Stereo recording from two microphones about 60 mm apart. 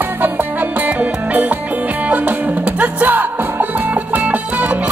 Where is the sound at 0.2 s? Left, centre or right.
Right.